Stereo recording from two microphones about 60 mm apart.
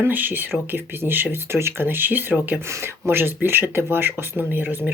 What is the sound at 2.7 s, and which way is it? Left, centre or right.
Speech, right.